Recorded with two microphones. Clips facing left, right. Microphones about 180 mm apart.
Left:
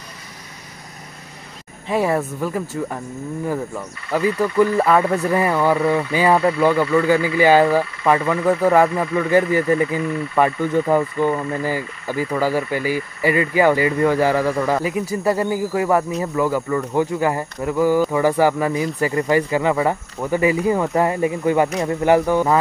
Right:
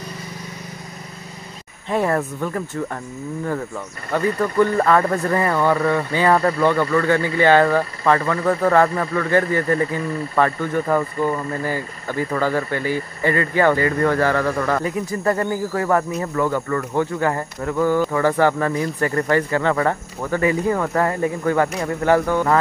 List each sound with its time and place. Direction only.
1.9 s speech: 5° left (ahead or behind)